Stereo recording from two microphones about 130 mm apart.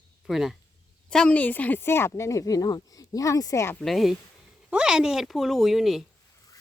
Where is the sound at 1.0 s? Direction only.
10° left (ahead or behind).